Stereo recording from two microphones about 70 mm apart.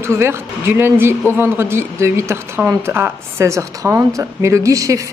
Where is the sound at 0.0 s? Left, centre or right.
Right.